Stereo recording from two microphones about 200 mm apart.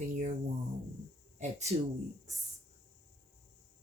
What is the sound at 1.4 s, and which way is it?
Speech, 35° right (ahead or behind).